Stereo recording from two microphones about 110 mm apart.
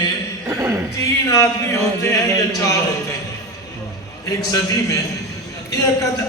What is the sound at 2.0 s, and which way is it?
Speech, 30° left (ahead or behind).